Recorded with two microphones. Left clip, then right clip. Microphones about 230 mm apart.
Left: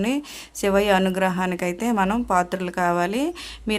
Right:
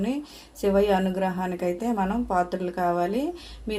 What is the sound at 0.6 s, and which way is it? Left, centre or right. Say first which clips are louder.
A woman's voice: left 3 dB; left.